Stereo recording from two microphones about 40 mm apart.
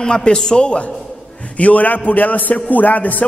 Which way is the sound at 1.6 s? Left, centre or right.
Left.